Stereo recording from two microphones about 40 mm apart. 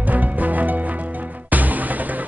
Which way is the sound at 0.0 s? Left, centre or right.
Right.